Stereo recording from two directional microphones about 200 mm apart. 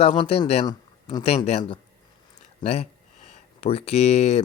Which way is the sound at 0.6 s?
20° left (ahead or behind).